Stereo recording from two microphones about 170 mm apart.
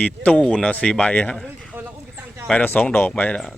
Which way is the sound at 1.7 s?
10° right (ahead or behind).